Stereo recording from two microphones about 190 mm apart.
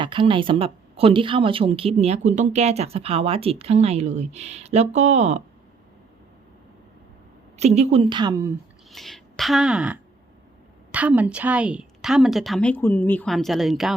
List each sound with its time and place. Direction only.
0.0 s speech: 25° right (ahead or behind)
7.6 s a woman's voice: 35° right (ahead or behind); by 8.5 s 20° right (ahead or behind)
8.9 s a woman's voice: centre (ahead or behind)